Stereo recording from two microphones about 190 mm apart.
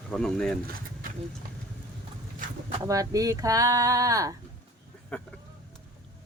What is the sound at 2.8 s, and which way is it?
Speech, 15° right (ahead or behind).